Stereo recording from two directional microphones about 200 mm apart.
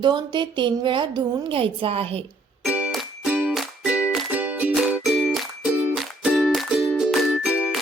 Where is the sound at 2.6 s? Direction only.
5° right (ahead or behind).